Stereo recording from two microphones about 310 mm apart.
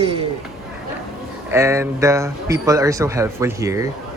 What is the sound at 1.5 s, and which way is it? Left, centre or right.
A man's voice, centre.